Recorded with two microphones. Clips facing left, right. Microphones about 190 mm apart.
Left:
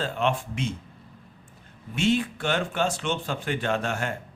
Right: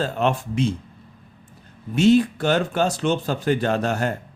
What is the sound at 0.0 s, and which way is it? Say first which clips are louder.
Speech: right 4 dB; 40° right (ahead or behind).